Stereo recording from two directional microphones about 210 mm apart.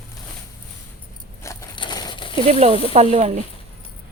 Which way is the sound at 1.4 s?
15° left (ahead or behind).